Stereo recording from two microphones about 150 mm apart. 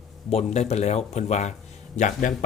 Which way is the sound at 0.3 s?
45° left (ahead or behind).